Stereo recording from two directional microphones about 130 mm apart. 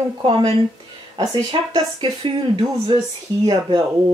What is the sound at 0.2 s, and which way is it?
Speech, 40° right (ahead or behind).